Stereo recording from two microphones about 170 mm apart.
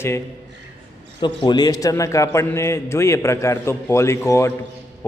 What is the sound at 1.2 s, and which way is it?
A man's voice, 25° left (ahead or behind).